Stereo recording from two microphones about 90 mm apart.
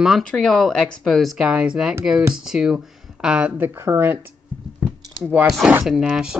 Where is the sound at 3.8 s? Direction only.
30° right (ahead or behind).